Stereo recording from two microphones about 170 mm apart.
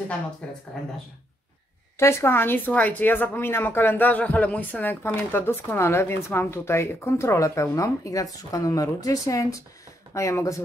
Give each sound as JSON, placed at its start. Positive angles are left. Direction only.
{"t": 0.4, "sound": "speech", "side_deg": 5}
{"t": 2.0, "sound": "speech", "side_deg": 15}